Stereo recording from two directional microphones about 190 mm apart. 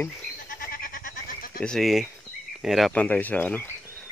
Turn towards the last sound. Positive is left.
turn(degrees=10)  # may be behind; listen again after turning